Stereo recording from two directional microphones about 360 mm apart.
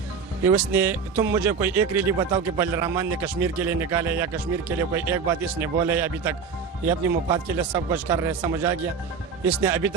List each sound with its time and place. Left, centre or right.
0.4 s speech: centre